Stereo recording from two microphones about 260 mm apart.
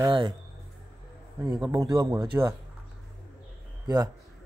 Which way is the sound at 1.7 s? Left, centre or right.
Centre.